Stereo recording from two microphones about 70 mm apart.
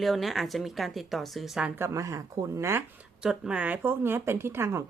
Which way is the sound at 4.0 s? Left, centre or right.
Right.